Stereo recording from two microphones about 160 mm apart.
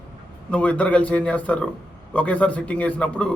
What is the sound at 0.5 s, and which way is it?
A man's voice, 10° left (ahead or behind).